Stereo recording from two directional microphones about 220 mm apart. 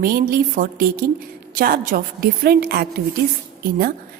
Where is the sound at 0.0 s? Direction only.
40° right (ahead or behind).